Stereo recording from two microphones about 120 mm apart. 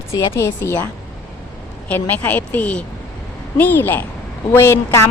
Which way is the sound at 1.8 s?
15° left (ahead or behind).